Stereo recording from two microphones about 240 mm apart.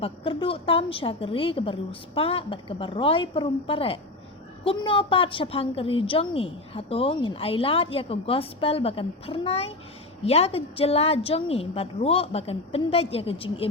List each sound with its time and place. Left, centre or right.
0.0 s a woman's voice: left